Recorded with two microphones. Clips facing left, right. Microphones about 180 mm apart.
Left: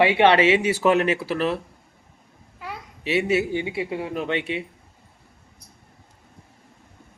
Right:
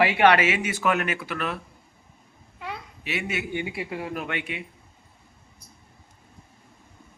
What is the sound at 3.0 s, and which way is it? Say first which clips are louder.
Speech: left 10 dB; 35° left (ahead or behind).